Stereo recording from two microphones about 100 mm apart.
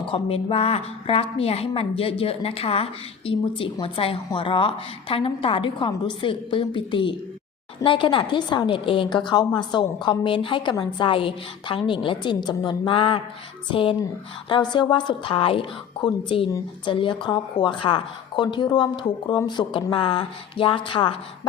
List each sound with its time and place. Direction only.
0.1 s a woman's voice: 70° left (ahead or behind)
14.5 s a woman's voice: 50° left (ahead or behind)